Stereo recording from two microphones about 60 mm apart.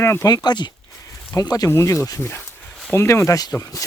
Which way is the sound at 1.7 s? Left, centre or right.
Left.